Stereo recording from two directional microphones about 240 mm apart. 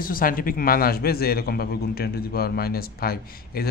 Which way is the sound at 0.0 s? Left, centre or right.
Left.